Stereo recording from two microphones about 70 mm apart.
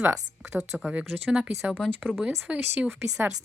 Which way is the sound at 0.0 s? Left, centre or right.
Centre.